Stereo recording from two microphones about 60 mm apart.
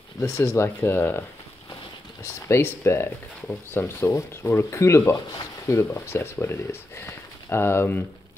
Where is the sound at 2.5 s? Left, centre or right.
Left.